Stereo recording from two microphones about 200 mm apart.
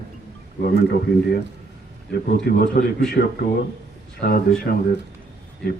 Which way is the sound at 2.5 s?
50° left (ahead or behind).